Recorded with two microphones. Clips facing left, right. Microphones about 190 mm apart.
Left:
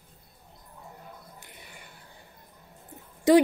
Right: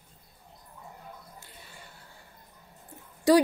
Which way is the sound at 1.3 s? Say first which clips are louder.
Left 1 dB; 15° left (ahead or behind).